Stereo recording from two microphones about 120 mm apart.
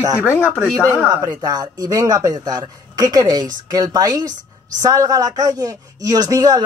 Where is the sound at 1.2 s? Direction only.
35° right (ahead or behind).